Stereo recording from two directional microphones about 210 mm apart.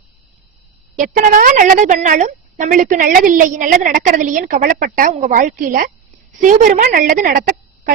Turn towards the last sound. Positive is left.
turn(degrees=-40)  # may be behind; listen again after turning